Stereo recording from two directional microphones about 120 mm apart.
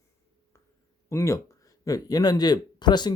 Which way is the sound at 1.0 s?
25° left (ahead or behind).